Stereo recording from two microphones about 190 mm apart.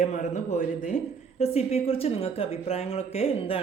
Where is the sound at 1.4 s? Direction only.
35° left (ahead or behind).